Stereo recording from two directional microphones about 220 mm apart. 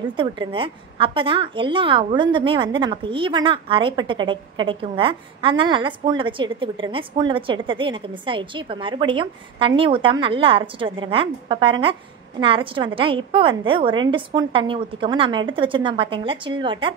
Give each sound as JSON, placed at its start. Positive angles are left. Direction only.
{"t": 0.2, "sound": "a woman's voice", "side_deg": -25}